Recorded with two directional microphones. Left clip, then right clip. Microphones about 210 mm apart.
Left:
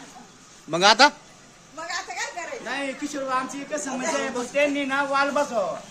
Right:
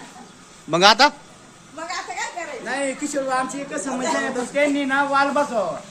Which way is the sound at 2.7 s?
45° left (ahead or behind).